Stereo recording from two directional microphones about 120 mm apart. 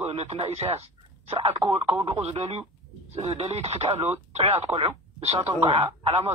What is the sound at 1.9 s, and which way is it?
Speech, 55° right (ahead or behind).